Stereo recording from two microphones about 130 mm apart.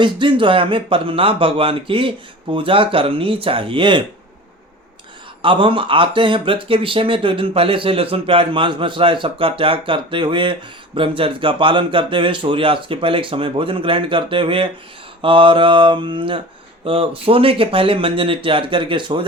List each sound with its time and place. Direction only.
0.0 s speech: 40° right (ahead or behind)
5.4 s speech: 40° right (ahead or behind)